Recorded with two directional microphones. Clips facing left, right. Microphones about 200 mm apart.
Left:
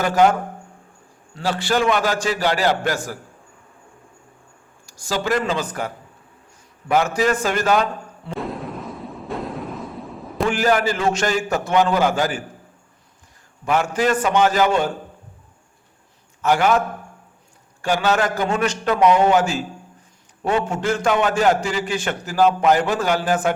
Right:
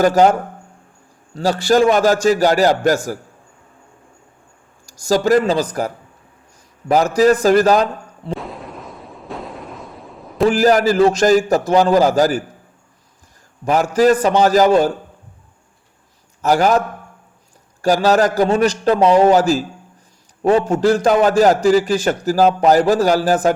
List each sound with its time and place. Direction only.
0.0 s a man's voice: 40° right (ahead or behind)
1.4 s a man's voice: 40° right (ahead or behind)
4.9 s a man's voice: 45° right (ahead or behind)
8.4 s a sound: centre (ahead or behind)
10.4 s a man's voice: 40° right (ahead or behind)
13.7 s a man's voice: 40° right (ahead or behind)
16.4 s a man's voice: 40° right (ahead or behind)
17.8 s a man's voice: 35° right (ahead or behind)